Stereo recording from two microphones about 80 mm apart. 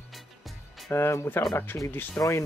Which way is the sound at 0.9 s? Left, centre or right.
Left.